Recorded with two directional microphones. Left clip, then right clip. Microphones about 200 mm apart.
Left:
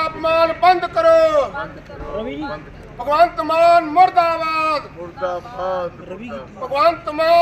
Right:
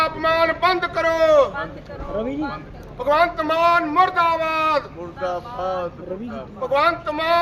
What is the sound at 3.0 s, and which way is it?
Speech, 10° left (ahead or behind).